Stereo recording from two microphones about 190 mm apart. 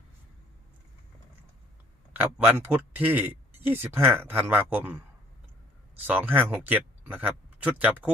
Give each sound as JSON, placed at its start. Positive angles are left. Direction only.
{"t": 2.1, "sound": "speech", "side_deg": -10}
{"t": 6.1, "sound": "speech", "side_deg": -10}